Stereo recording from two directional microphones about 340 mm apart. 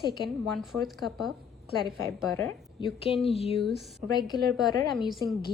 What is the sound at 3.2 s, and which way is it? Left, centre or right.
Speech, centre.